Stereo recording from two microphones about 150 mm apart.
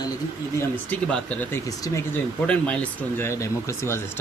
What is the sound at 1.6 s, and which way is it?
Speech, 20° left (ahead or behind).